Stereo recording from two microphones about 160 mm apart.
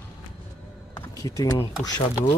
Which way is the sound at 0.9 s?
20° left (ahead or behind).